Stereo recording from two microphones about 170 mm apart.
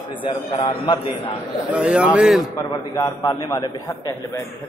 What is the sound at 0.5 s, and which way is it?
Speech, 25° left (ahead or behind).